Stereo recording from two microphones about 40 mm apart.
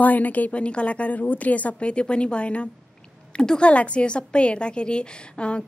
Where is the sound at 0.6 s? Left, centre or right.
Left.